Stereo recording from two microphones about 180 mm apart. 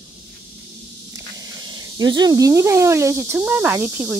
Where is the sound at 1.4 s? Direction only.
20° right (ahead or behind).